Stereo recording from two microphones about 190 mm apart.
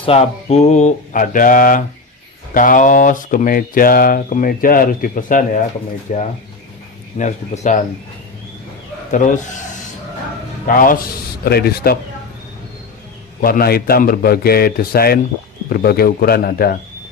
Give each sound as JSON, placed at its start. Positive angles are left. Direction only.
{"t": 0.0, "sound": "a sound", "side_deg": 30}
{"t": 2.5, "sound": "speech", "side_deg": 45}
{"t": 6.1, "sound": "a sound", "side_deg": 40}
{"t": 9.1, "sound": "speech", "side_deg": 40}
{"t": 10.7, "sound": "speech", "side_deg": 45}
{"t": 13.4, "sound": "speech", "side_deg": 50}